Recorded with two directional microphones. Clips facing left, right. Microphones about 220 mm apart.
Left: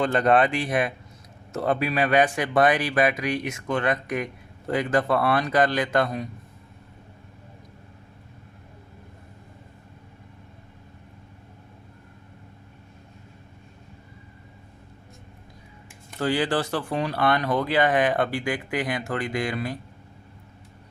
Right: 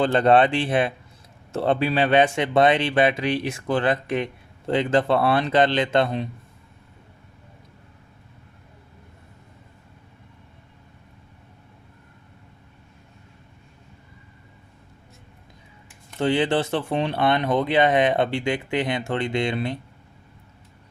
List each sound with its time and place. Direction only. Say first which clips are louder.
0.0 s speech: right 3 dB; 30° right (ahead or behind)
16.1 s speech: right 3 dB; 25° right (ahead or behind)